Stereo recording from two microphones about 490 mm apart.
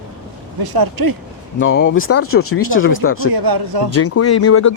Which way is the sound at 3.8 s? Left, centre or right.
Left.